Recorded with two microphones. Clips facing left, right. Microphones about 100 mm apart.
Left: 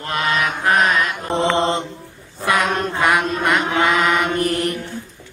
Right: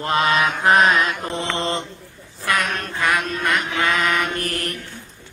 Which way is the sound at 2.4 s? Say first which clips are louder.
Left 4 dB; 20° left (ahead or behind).